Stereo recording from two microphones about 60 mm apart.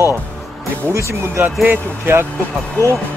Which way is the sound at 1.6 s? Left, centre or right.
Right.